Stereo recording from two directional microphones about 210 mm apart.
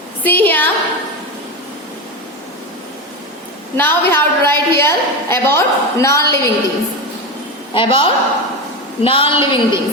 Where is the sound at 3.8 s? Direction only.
10° left (ahead or behind).